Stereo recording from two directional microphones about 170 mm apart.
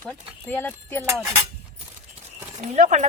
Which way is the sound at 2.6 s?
45° right (ahead or behind).